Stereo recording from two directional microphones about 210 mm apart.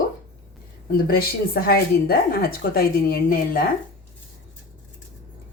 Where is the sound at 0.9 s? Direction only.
45° left (ahead or behind).